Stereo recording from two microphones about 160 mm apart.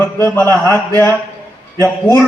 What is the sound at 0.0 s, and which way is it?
A man's voice, 15° left (ahead or behind).